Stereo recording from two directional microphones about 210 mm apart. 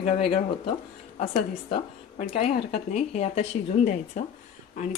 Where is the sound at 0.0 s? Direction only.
25° left (ahead or behind).